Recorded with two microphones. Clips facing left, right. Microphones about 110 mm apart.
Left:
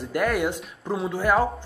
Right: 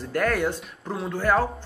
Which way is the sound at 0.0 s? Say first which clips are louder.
Even; 15° left (ahead or behind).